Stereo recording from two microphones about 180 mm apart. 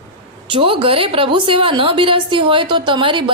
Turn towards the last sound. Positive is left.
turn(degrees=-25)  # may be behind; listen again after turning